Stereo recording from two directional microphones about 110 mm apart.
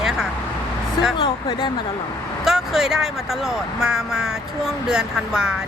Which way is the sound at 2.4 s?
5° right (ahead or behind).